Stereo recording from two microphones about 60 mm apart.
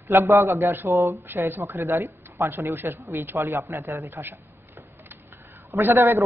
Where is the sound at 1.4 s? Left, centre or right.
Right.